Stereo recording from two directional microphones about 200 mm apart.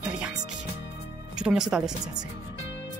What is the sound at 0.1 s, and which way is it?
Music, 5° right (ahead or behind).